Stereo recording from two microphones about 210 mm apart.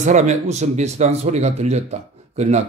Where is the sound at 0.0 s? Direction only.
35° right (ahead or behind).